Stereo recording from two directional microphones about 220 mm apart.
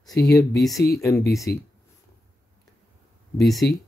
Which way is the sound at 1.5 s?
45° left (ahead or behind).